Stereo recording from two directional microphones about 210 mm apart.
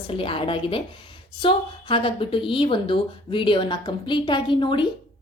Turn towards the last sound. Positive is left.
turn(degrees=25)  # may be behind; listen again after turning